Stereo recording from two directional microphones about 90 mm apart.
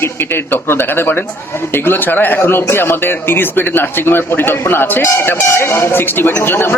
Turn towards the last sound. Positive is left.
turn(degrees=25)  # may be behind; listen again after turning